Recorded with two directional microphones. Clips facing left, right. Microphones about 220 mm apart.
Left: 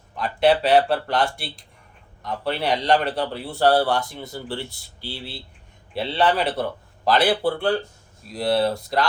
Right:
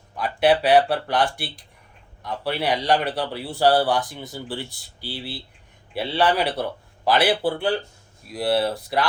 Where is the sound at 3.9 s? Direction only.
15° right (ahead or behind).